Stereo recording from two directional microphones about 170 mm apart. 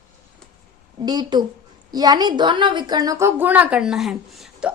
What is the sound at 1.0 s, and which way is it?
A woman's voice, 25° right (ahead or behind).